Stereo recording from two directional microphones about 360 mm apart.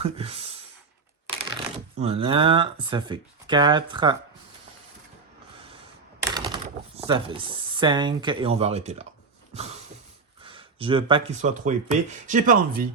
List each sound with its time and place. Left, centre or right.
0.0 s speech: centre
6.2 s speech: centre
9.5 s a sound: centre
10.4 s speech: centre